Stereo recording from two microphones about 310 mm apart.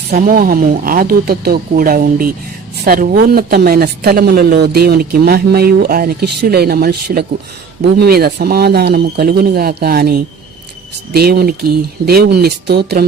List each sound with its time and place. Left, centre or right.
0.1 s speech: right